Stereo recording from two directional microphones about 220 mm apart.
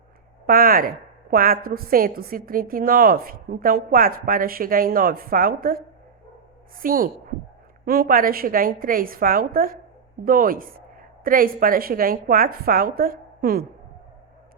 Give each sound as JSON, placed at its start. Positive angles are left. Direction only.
{"t": 0.4, "sound": "a woman's voice", "side_deg": -40}
{"t": 6.8, "sound": "a woman's voice", "side_deg": -40}